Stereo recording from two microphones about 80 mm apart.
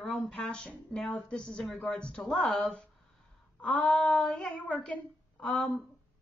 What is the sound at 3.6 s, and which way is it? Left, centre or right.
Speech, centre.